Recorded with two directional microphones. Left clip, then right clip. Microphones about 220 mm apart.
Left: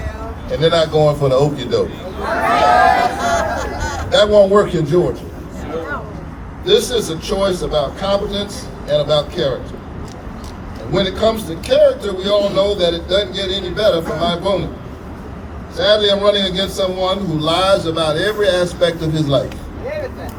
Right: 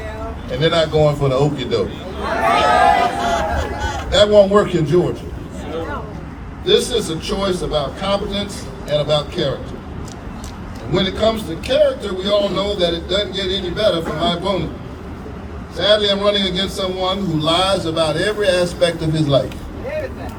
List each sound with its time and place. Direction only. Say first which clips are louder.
0.5 s a man's voice: left 2 dB; 15° right (ahead or behind)
2.2 s speech: left 1 dB; 5° left (ahead or behind)
2.7 s a sound: left 1 dB; centre (ahead or behind)
4.1 s a man's voice: left 1 dB; 15° right (ahead or behind)
6.7 s a man's voice: left 1 dB; 15° right (ahead or behind)
10.9 s a man's voice: left 1 dB; 20° right (ahead or behind)
15.8 s a man's voice: left 2 dB; 15° right (ahead or behind)